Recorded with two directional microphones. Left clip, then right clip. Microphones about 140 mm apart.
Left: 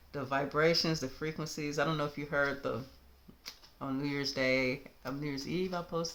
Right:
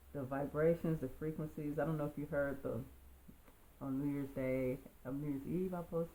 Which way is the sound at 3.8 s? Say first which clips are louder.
Left 6 dB; 30° left (ahead or behind).